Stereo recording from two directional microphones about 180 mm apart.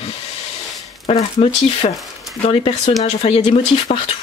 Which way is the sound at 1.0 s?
35° left (ahead or behind).